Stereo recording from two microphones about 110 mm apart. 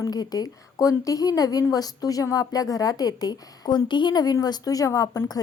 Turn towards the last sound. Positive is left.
turn(degrees=30)  # may be behind; listen again after turning